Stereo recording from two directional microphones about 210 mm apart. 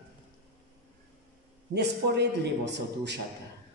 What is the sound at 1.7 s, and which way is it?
A man's voice, 55° right (ahead or behind).